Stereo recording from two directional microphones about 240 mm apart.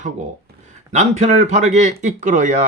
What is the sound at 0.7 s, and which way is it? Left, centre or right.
Speech, right.